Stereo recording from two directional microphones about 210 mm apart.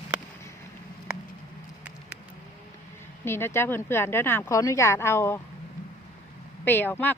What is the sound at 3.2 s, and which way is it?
Speech, 10° left (ahead or behind).